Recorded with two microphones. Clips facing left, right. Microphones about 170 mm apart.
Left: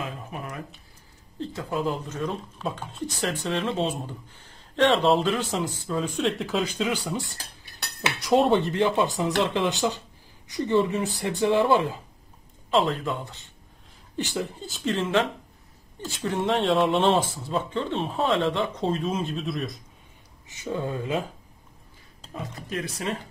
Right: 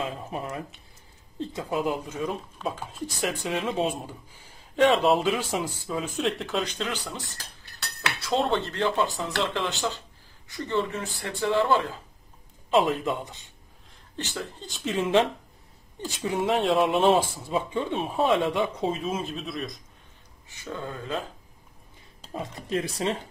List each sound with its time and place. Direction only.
0.0 s speech: 30° right (ahead or behind)
1.5 s speech: 15° right (ahead or behind); by 12.0 s 15° left (ahead or behind)
12.7 s speech: 15° right (ahead or behind)
14.1 s speech: 15° left (ahead or behind)
14.7 s speech: centre (ahead or behind)
15.0 s speech: 15° right (ahead or behind)
20.4 s speech: 20° left (ahead or behind)
22.7 s speech: 30° right (ahead or behind)